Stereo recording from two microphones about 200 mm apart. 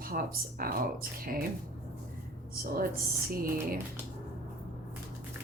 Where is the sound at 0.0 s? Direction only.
45° right (ahead or behind).